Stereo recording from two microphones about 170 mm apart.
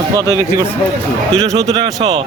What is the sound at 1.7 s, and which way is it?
Speech, 35° right (ahead or behind).